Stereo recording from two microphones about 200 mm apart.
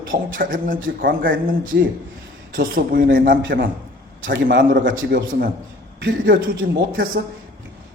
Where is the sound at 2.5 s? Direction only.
45° right (ahead or behind).